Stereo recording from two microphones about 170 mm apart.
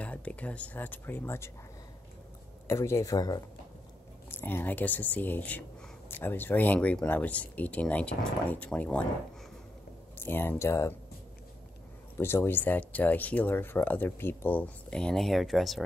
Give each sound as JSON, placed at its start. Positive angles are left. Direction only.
{"t": 0.0, "sound": "speech", "side_deg": 10}
{"t": 2.7, "sound": "speech", "side_deg": 15}
{"t": 10.1, "sound": "speech", "side_deg": 15}
{"t": 12.2, "sound": "speech", "side_deg": 15}